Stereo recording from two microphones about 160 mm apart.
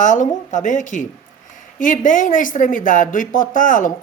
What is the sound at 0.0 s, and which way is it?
Speech, 50° left (ahead or behind).